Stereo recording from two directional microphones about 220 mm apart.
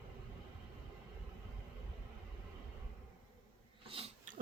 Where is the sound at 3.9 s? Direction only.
25° right (ahead or behind).